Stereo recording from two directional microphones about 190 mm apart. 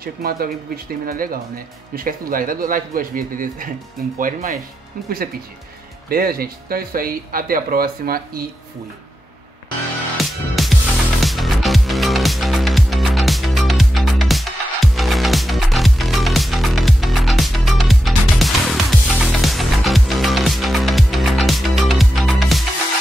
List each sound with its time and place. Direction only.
0.0 s speech: 55° right (ahead or behind)
6.0 s speech: 50° right (ahead or behind)
10.2 s music: centre (ahead or behind)